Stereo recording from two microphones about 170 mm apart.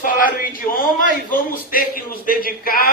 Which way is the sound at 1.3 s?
55° left (ahead or behind).